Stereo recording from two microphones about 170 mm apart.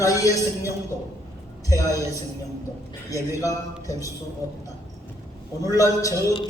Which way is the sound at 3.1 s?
20° left (ahead or behind).